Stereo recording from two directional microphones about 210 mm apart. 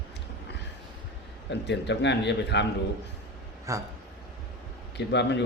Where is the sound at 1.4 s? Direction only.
55° left (ahead or behind).